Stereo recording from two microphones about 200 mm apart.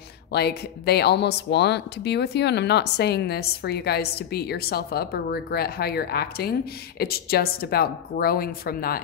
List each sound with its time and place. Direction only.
0.3 s a woman's voice: 55° left (ahead or behind)